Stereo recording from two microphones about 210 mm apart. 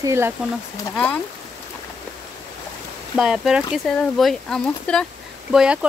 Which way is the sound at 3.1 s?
5° right (ahead or behind).